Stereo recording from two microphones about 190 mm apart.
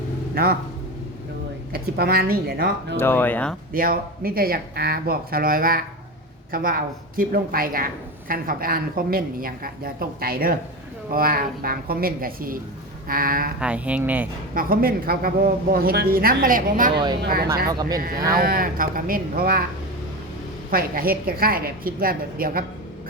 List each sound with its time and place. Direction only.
1.7 s speech: 55° right (ahead or behind)
3.0 s speech: 10° left (ahead or behind)
3.7 s speech: 50° right (ahead or behind)
13.6 s speech: 5° right (ahead or behind)
14.5 s speech: 50° right (ahead or behind)
17.7 s speech: 20° right (ahead or behind)
18.3 s speech: 50° right (ahead or behind)
20.7 s speech: 50° right (ahead or behind)